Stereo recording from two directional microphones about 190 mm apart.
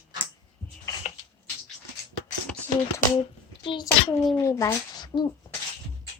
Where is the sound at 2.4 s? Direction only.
5° left (ahead or behind).